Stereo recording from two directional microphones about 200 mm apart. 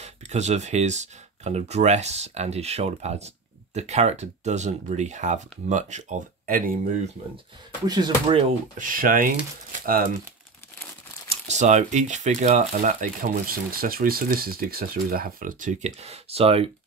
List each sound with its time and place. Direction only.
0.0 s speech: 35° right (ahead or behind)
7.8 s speech: 20° right (ahead or behind)
8.7 s speech: 45° right (ahead or behind)
11.2 s speech: 35° right (ahead or behind)